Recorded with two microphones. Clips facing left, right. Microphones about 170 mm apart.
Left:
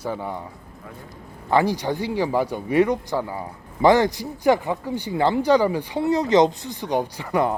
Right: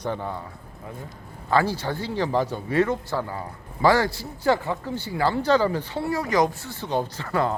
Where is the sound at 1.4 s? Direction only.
15° left (ahead or behind).